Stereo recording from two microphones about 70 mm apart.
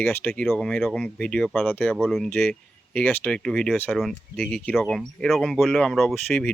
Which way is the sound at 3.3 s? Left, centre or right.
Centre.